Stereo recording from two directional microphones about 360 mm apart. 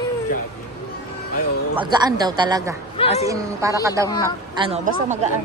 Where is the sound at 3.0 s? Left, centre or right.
Centre.